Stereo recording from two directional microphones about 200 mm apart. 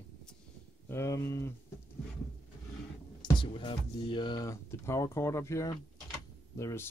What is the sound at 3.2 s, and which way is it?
Speech, 25° left (ahead or behind).